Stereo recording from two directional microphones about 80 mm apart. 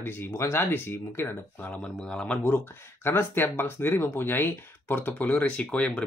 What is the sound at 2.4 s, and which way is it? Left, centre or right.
Speech, left.